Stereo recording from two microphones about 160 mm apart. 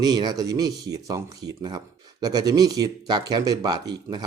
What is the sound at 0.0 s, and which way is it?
Speech, 25° right (ahead or behind).